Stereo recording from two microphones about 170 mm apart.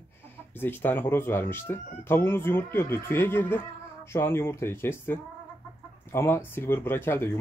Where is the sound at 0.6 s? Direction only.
10° left (ahead or behind).